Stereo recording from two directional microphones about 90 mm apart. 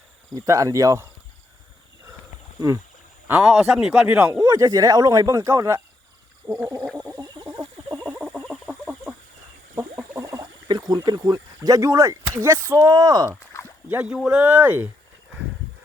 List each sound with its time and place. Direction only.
0.3 s speech: 35° right (ahead or behind)
2.6 s speech: 35° right (ahead or behind)
3.3 s speech: 5° right (ahead or behind)
4.0 s speech: 15° right (ahead or behind)
4.3 s speech: 40° right (ahead or behind)
6.4 s gargling: 55° right (ahead or behind)
7.0 s frog: 40° right (ahead or behind)
8.2 s fowl: 10° right (ahead or behind)
9.7 s frog: 30° right (ahead or behind)
10.7 s speech: 50° right (ahead or behind)
12.9 s speech: 45° right (ahead or behind)
13.5 s a sound: 35° left (ahead or behind)
14.1 s speech: 10° right (ahead or behind)